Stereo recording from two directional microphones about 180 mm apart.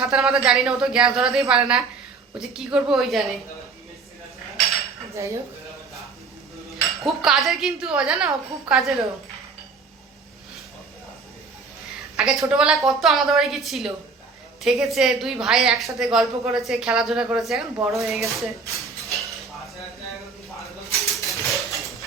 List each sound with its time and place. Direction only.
0.0 s speech: 5° right (ahead or behind)
5.1 s dishes: 15° right (ahead or behind)
7.0 s speech: centre (ahead or behind)
12.1 s speech: 5° right (ahead or behind)
21.2 s a sound: centre (ahead or behind)